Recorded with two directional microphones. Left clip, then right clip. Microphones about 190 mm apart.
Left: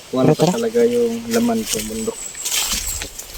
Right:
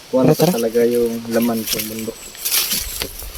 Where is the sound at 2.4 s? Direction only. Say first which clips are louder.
Right 1 dB; 20° right (ahead or behind).